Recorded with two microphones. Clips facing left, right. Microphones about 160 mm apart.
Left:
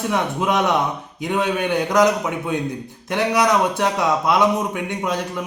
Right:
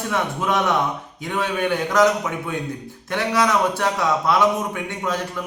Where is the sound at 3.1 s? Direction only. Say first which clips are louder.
Left 2 dB; 15° left (ahead or behind).